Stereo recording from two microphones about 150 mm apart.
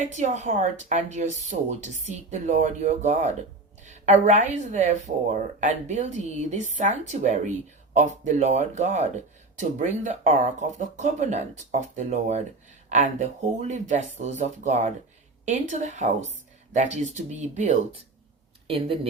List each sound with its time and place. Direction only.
0.1 s speech: 50° right (ahead or behind)